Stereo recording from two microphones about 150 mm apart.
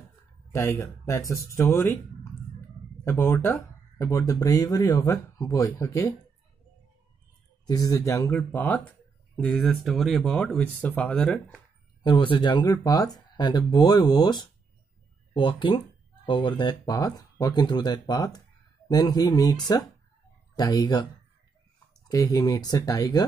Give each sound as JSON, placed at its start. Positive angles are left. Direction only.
{"t": 0.5, "sound": "speech", "side_deg": 15}
{"t": 3.0, "sound": "speech", "side_deg": 20}
{"t": 7.6, "sound": "speech", "side_deg": 25}
{"t": 12.0, "sound": "speech", "side_deg": 30}